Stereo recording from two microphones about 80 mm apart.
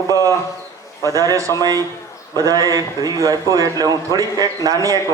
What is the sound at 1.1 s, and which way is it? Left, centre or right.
A man's voice, right.